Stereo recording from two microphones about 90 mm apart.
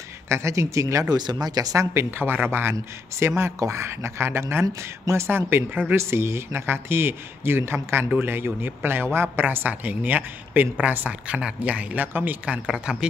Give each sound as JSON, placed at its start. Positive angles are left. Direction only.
{"t": 0.3, "sound": "speech", "side_deg": -35}
{"t": 1.1, "sound": "speech", "side_deg": -50}
{"t": 2.1, "sound": "a man's voice", "side_deg": -25}